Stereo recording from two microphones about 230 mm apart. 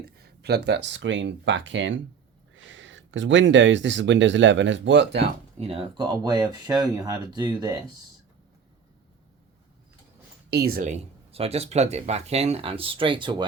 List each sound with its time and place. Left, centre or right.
0.0 s speech: right
5.5 s speech: right
10.5 s speech: right